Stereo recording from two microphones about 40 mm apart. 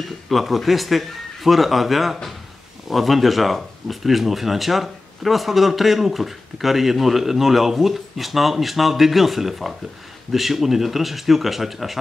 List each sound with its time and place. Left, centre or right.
0.3 s speech: centre